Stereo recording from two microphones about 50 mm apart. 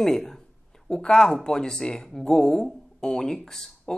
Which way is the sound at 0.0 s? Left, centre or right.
Centre.